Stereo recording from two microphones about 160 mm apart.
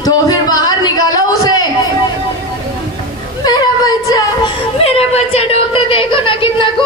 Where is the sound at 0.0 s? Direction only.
25° left (ahead or behind).